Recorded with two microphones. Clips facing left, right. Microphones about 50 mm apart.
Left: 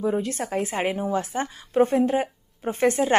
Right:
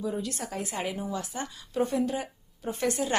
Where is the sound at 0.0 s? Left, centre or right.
Left.